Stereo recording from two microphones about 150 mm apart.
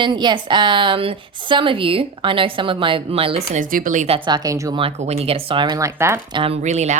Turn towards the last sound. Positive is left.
turn(degrees=-50)  # may be behind; listen again after turning